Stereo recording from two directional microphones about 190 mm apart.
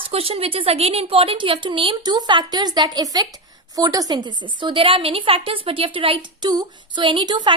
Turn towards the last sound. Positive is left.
turn(degrees=-25)  # may be behind; listen again after turning